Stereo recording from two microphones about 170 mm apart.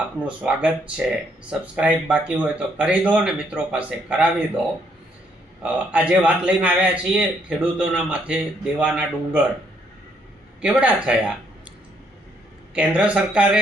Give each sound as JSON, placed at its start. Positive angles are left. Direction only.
{"t": 0.3, "sound": "a man's voice", "side_deg": -5}
{"t": 5.6, "sound": "a man's voice", "side_deg": -5}
{"t": 10.6, "sound": "a man's voice", "side_deg": -5}
{"t": 12.7, "sound": "speech", "side_deg": -5}